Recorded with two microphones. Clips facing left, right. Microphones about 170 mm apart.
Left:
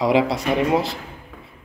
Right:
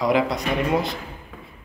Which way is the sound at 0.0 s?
25° left (ahead or behind).